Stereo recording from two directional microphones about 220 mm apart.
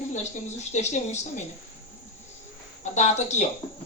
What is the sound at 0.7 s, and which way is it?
Speech, 30° left (ahead or behind).